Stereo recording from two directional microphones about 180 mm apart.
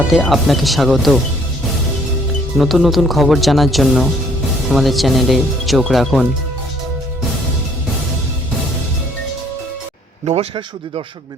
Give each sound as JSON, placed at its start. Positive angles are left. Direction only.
{"t": 0.1, "sound": "speech", "side_deg": 0}
{"t": 2.6, "sound": "speech", "side_deg": 0}
{"t": 10.2, "sound": "speech", "side_deg": -30}